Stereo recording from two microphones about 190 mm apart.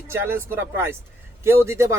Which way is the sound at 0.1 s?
15° right (ahead or behind).